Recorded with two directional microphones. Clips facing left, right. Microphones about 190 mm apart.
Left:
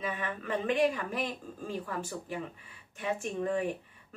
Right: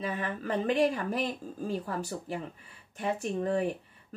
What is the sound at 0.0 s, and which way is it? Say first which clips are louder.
A woman's voice: right 2 dB; 40° right (ahead or behind).